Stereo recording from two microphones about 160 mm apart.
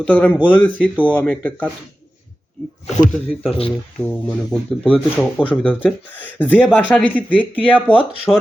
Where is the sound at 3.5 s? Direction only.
35° left (ahead or behind).